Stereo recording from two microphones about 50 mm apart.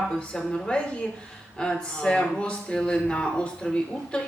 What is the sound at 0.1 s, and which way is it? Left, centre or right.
A woman's voice, centre.